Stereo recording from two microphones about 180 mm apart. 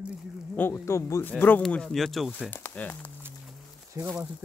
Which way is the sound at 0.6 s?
15° left (ahead or behind).